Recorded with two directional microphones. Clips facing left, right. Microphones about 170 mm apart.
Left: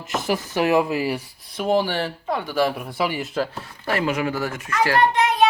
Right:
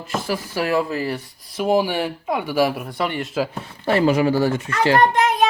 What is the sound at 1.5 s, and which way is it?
Speech, 5° right (ahead or behind).